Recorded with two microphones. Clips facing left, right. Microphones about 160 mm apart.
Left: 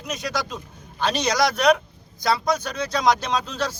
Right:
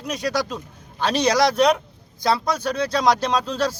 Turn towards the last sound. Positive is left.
turn(degrees=-35)  # may be behind; listen again after turning